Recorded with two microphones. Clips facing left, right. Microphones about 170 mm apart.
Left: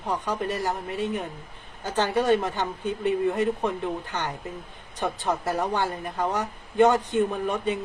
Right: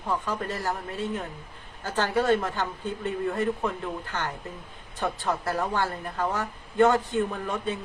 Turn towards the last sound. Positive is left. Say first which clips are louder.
# left 4 dB
turn(degrees=15)  # may be behind; listen again after turning